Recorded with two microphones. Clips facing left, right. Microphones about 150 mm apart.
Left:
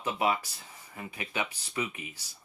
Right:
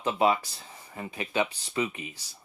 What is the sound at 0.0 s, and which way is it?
Speech, 25° right (ahead or behind).